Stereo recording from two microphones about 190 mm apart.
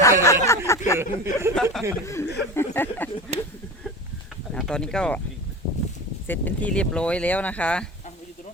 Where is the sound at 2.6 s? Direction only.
10° left (ahead or behind).